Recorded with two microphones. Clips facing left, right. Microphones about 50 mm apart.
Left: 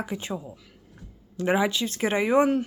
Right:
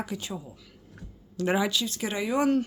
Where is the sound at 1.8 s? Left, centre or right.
Left.